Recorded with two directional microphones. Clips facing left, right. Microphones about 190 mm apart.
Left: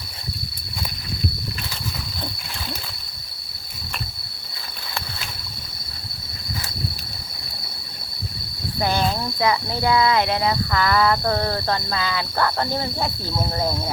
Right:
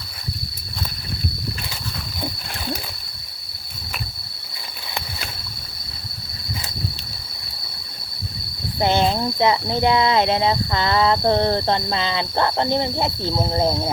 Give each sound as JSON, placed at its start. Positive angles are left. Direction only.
{"t": 8.8, "sound": "speech", "side_deg": -25}